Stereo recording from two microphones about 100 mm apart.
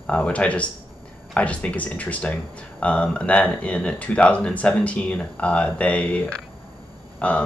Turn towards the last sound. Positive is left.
turn(degrees=15)  # may be behind; listen again after turning